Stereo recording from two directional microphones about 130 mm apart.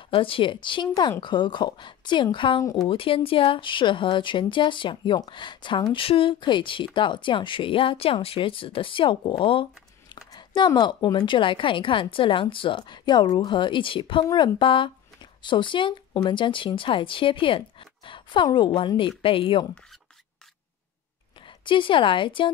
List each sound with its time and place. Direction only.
0.1 s a woman's voice: 45° left (ahead or behind)
21.5 s a woman's voice: 40° left (ahead or behind)